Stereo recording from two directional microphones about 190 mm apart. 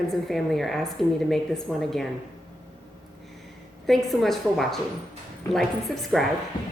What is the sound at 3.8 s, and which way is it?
A woman's voice, centre (ahead or behind).